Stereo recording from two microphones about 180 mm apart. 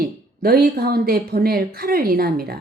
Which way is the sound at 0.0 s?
60° right (ahead or behind).